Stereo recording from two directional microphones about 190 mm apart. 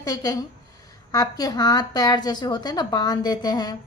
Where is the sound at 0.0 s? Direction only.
20° left (ahead or behind).